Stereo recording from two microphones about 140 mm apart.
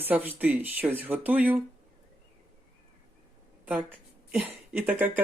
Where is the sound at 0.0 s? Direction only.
15° right (ahead or behind).